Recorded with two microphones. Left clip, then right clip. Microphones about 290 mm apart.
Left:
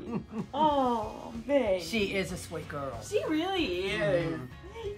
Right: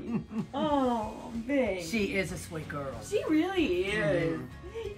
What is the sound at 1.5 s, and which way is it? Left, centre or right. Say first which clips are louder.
A woman's voice: left 3 dB; left.